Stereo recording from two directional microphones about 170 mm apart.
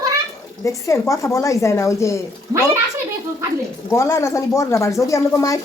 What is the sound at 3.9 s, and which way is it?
A woman's voice, 15° left (ahead or behind).